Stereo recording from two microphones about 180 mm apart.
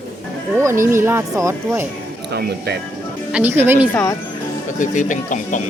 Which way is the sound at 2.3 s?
65° right (ahead or behind).